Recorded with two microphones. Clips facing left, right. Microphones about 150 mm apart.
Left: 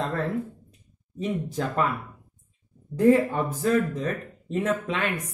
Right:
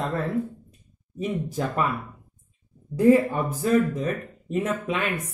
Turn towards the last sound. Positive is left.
turn(degrees=-10)  # may be behind; listen again after turning